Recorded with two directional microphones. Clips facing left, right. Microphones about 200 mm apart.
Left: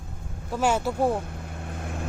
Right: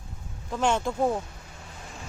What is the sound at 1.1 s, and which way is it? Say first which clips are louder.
Vehicle: left 2 dB; 55° left (ahead or behind).